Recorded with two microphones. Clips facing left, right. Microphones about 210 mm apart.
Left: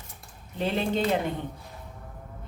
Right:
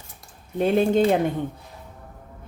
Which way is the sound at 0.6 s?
50° right (ahead or behind).